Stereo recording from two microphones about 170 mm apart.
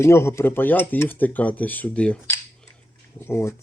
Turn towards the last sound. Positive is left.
turn(degrees=15)  # may be behind; listen again after turning